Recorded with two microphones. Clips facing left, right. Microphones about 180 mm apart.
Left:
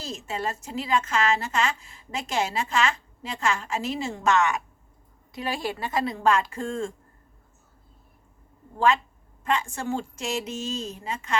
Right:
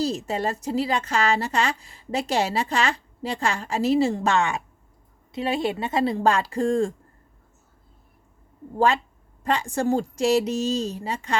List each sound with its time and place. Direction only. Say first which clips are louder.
0.0 s a woman's voice: right 6 dB; 35° right (ahead or behind)
9.4 s a woman's voice: right 4 dB; 35° right (ahead or behind)